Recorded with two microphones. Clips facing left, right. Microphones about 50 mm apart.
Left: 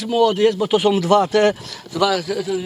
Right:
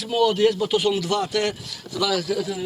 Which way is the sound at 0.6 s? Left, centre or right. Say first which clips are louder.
Left 5 dB; left.